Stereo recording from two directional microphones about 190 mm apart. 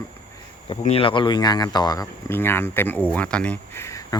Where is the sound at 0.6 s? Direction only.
30° left (ahead or behind).